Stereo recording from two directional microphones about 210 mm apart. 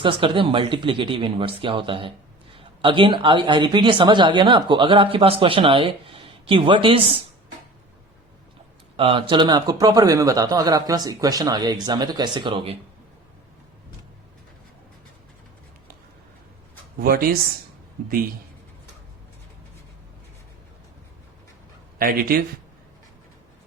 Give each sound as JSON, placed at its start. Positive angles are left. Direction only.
{"t": 0.0, "sound": "speech", "side_deg": -25}
{"t": 9.0, "sound": "speech", "side_deg": -25}
{"t": 17.0, "sound": "speech", "side_deg": -45}
{"t": 21.9, "sound": "speech", "side_deg": -45}